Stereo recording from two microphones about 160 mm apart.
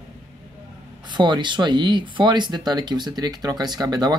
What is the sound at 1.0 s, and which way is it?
Speech, 30° right (ahead or behind).